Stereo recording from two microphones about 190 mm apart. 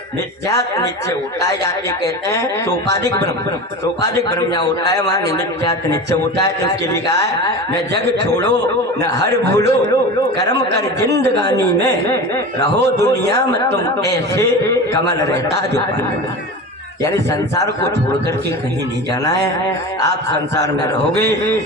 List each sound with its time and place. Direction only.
0.4 s a man's voice: 15° left (ahead or behind)
2.8 s a man's voice: 65° right (ahead or behind)
4.4 s a man's voice: 20° left (ahead or behind)
6.1 s a man's voice: 65° right (ahead or behind)
7.7 s a man's voice: 60° right (ahead or behind)
14.0 s a man's voice: 15° left (ahead or behind)
17.0 s a man's voice: 15° left (ahead or behind)
20.0 s a man's voice: 65° right (ahead or behind)